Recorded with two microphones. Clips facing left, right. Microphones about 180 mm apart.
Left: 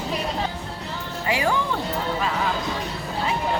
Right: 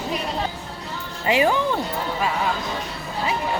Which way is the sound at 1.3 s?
20° right (ahead or behind).